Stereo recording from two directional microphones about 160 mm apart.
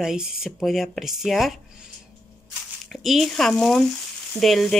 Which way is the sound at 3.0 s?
Centre (ahead or behind).